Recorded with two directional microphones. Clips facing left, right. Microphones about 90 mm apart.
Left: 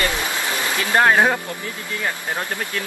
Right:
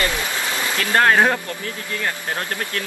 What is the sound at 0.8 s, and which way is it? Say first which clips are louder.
Speech: even; 10° left (ahead or behind).